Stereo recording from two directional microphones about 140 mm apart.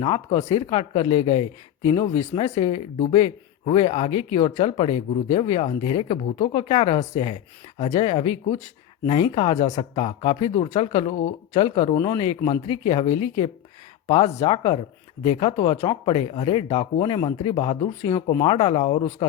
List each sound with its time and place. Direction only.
0.0 s speech: 40° left (ahead or behind)
1.9 s speech: 35° left (ahead or behind); by 8.2 s 55° left (ahead or behind)
9.0 s speech: 40° left (ahead or behind)
18.3 s speech: 30° left (ahead or behind)
18.5 s speech: 45° left (ahead or behind)